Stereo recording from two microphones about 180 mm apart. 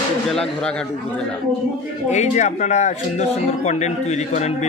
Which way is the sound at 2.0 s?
40° left (ahead or behind).